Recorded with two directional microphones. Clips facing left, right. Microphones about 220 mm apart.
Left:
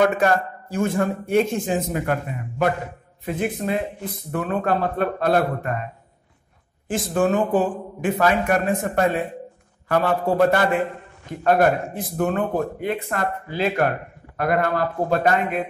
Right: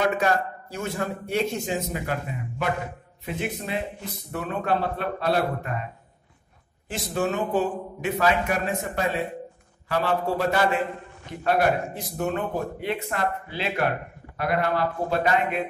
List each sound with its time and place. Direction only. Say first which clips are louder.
0.2 s speech: left 4 dB; 50° left (ahead or behind)
3.3 s speech: left 6 dB; 50° left (ahead or behind)
6.9 s speech: left 6 dB; 50° left (ahead or behind)